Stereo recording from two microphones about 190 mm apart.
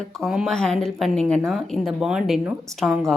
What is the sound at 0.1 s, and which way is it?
Speech, centre (ahead or behind).